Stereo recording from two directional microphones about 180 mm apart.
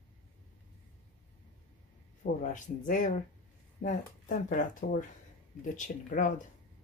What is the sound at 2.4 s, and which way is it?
Speech, 45° left (ahead or behind).